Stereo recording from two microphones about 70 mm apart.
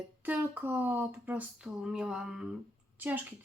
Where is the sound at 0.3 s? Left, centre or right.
Right.